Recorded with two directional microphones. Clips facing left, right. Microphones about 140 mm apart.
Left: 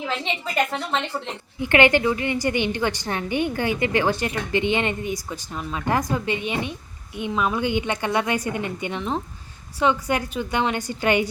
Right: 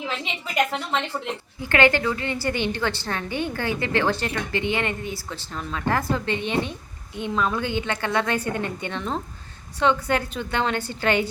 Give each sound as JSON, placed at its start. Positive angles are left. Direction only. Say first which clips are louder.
{"t": 0.9, "sound": "a woman's voice", "louder": "even", "side_deg": 5}
{"t": 1.6, "sound": "a woman's voice", "louder": "left 2 dB", "side_deg": 20}